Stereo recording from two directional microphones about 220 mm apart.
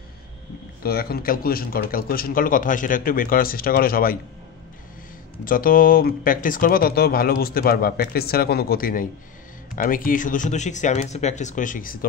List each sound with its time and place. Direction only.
0.8 s speech: 45° left (ahead or behind)
5.4 s speech: 40° left (ahead or behind)